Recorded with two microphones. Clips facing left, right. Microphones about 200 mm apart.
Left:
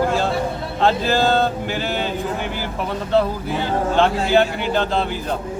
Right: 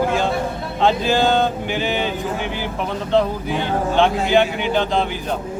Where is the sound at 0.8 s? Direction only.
Centre (ahead or behind).